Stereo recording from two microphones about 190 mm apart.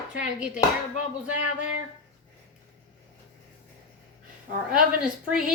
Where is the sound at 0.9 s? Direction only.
40° left (ahead or behind).